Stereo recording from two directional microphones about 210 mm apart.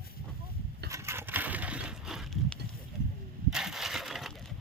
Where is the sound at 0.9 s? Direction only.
10° right (ahead or behind).